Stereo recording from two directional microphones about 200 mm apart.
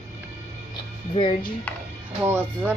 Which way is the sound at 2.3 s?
10° right (ahead or behind).